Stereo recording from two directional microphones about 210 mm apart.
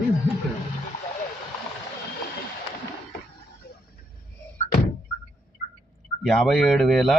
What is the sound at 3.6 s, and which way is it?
Vehicle, 45° left (ahead or behind).